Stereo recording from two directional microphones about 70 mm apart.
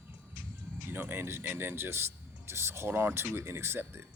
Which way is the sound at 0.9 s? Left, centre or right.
Right.